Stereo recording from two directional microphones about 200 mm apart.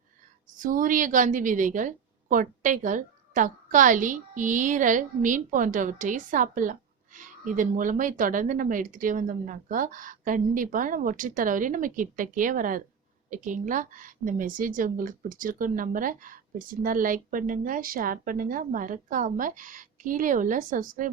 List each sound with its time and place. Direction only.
0.6 s a woman's voice: 40° right (ahead or behind)